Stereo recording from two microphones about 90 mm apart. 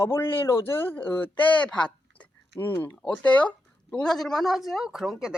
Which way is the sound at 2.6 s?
25° left (ahead or behind).